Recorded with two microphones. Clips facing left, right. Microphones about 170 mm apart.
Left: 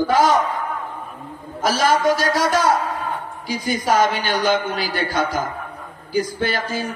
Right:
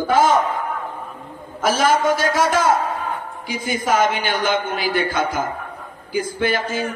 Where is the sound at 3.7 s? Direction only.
50° right (ahead or behind).